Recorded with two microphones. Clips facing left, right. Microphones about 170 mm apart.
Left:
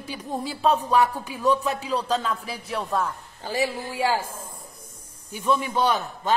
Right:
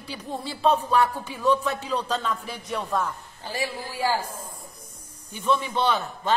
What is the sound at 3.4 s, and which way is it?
Speech, 20° left (ahead or behind).